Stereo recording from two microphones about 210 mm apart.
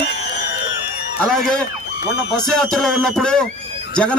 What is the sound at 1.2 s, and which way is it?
A man's voice, 5° left (ahead or behind).